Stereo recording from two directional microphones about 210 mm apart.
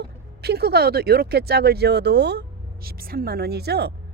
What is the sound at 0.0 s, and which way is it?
Speech, 50° right (ahead or behind).